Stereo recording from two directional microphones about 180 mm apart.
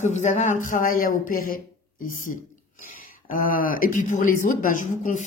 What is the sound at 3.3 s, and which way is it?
A woman's voice, 50° left (ahead or behind).